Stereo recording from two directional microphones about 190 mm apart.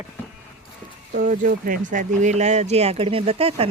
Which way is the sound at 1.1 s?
45° right (ahead or behind).